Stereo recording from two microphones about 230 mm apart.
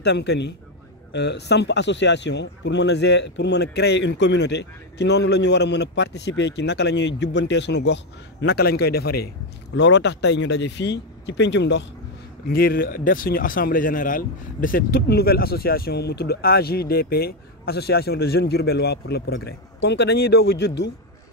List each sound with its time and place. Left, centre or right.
0.0 s speech: left